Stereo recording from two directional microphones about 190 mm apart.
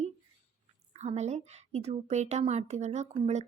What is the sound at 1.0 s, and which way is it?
A woman's voice, 35° right (ahead or behind).